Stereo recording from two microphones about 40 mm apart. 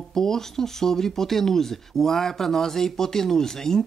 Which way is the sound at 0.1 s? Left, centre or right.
Centre.